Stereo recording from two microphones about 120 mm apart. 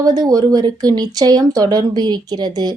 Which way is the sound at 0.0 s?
30° right (ahead or behind).